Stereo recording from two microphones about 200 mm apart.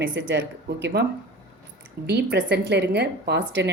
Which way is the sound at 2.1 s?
55° right (ahead or behind).